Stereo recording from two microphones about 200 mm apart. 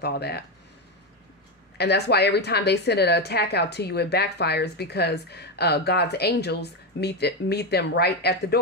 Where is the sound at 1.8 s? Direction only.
55° left (ahead or behind).